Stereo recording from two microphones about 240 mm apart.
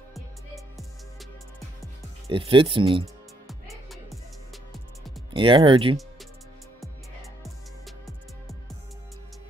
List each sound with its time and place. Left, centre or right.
2.2 s speech: right
5.3 s speech: right